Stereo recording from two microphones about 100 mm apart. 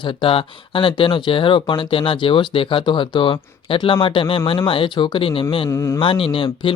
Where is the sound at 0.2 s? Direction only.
65° left (ahead or behind).